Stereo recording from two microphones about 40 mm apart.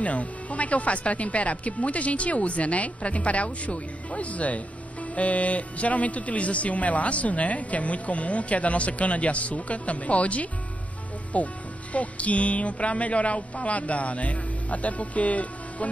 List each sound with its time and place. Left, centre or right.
0.0 s speech: left